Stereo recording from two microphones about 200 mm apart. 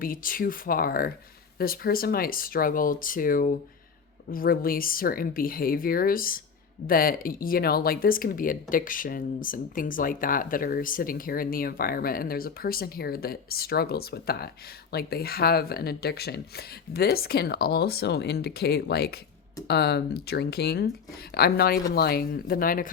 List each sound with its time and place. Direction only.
0.0 s speech: 45° left (ahead or behind)